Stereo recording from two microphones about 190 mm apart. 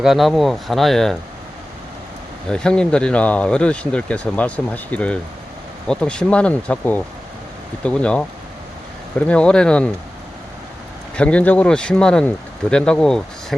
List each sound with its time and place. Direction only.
0.0 s speech: centre (ahead or behind)
2.5 s speech: 5° left (ahead or behind)
11.1 s speech: 5° left (ahead or behind)